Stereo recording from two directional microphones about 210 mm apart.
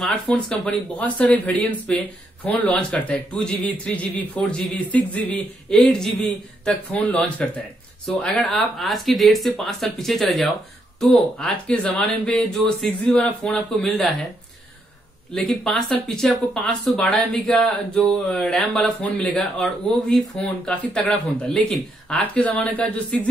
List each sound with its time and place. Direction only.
0.0 s speech: 5° left (ahead or behind)
15.3 s speech: centre (ahead or behind)